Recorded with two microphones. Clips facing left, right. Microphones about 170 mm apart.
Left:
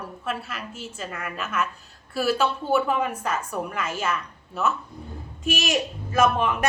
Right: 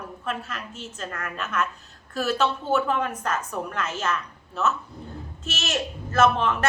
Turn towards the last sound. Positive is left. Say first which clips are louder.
# even
turn(degrees=15)  # may be behind; listen again after turning